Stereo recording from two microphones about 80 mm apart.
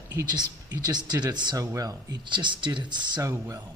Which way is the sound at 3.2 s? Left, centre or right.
Right.